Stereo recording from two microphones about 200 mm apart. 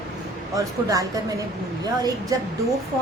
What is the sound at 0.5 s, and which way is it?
A woman's voice, 15° right (ahead or behind).